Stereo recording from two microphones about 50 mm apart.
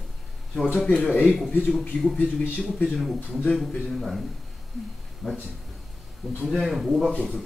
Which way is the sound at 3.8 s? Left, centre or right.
Centre.